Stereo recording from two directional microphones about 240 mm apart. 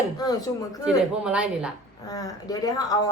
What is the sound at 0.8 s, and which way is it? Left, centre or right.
Speech, centre.